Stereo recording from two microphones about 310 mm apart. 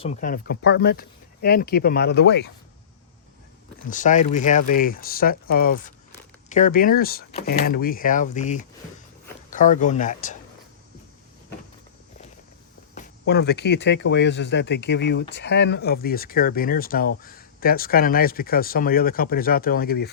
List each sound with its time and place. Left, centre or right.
0.0 s speech: left
3.8 s speech: left
12.9 s speech: left